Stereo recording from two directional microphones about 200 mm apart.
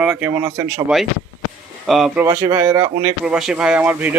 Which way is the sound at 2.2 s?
15° right (ahead or behind).